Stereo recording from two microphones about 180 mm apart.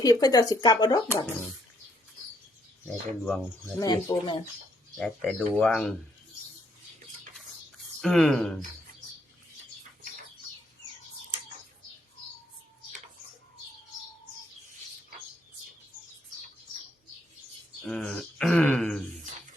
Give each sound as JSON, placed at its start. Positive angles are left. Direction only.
{"t": 0.0, "sound": "speech", "side_deg": 20}
{"t": 2.8, "sound": "speech", "side_deg": 0}
{"t": 3.8, "sound": "speech", "side_deg": 20}
{"t": 4.9, "sound": "speech", "side_deg": 5}
{"t": 8.0, "sound": "speech", "side_deg": 0}
{"t": 17.8, "sound": "speech", "side_deg": 5}